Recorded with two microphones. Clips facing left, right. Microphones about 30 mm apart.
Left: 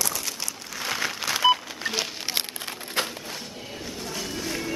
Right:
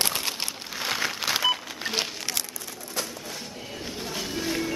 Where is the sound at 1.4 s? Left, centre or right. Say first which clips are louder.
Left 4 dB; centre.